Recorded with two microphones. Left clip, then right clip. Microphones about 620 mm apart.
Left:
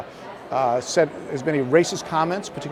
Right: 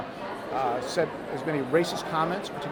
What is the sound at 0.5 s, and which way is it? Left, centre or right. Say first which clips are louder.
Speech: left 8 dB; left.